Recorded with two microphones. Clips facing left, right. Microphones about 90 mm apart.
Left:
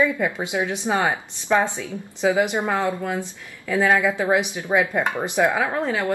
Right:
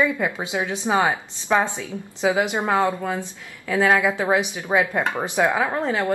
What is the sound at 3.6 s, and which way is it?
A woman's voice, 15° right (ahead or behind).